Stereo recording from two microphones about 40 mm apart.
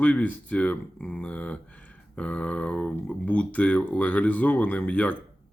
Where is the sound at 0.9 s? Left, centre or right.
Left.